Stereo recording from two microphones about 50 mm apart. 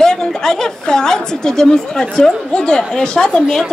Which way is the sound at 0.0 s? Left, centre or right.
Centre.